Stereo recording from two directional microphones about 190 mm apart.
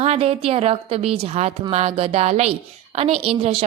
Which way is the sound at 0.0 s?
30° right (ahead or behind).